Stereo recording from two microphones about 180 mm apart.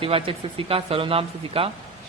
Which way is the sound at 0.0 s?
30° right (ahead or behind).